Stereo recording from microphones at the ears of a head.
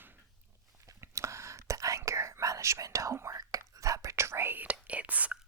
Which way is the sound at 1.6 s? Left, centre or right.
Right.